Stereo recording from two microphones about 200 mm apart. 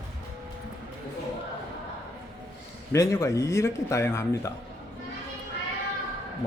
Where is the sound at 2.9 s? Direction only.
15° left (ahead or behind).